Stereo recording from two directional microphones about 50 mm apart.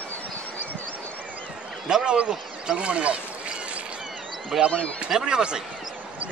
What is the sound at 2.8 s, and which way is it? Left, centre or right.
Speech, right.